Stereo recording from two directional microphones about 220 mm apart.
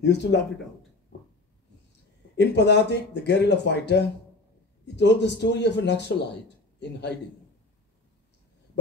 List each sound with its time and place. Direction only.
0.0 s speech: 50° left (ahead or behind)
2.3 s speech: 50° left (ahead or behind)